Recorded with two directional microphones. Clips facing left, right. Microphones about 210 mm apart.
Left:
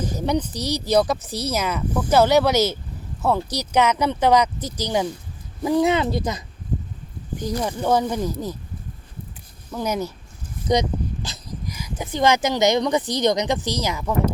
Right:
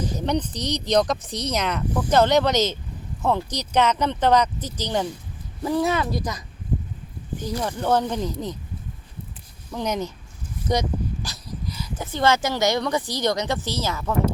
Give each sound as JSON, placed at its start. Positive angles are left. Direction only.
{"t": 0.0, "sound": "speech", "side_deg": 10}
{"t": 7.3, "sound": "speech", "side_deg": 15}
{"t": 9.7, "sound": "speech", "side_deg": 5}
{"t": 10.7, "sound": "speech", "side_deg": 20}